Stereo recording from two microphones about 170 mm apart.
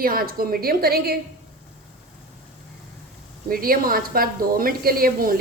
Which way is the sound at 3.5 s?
60° right (ahead or behind).